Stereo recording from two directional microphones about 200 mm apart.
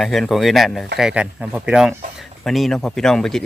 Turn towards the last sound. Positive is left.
turn(degrees=0)  # may be behind; listen again after turning